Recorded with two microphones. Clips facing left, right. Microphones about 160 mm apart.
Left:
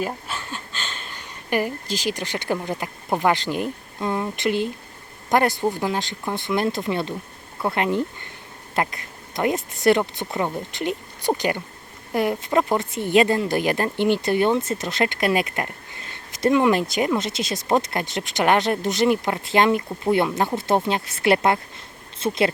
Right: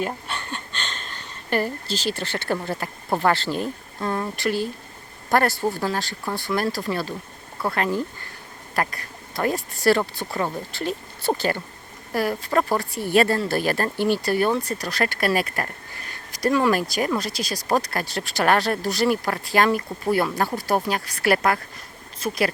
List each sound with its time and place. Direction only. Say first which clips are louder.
0.0 s speech: even; 5° left (ahead or behind); by 22.5 s 25° left (ahead or behind)